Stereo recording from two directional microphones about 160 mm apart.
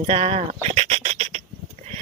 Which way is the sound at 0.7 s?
45° right (ahead or behind).